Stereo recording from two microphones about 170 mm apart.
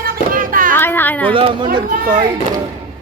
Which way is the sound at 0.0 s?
55° right (ahead or behind).